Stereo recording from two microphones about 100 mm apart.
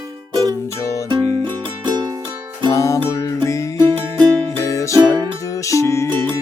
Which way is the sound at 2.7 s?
30° left (ahead or behind).